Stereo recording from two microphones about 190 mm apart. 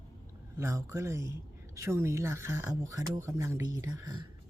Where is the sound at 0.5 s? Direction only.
15° right (ahead or behind).